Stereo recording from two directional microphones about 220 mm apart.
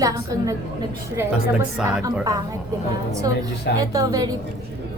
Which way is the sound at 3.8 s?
15° right (ahead or behind).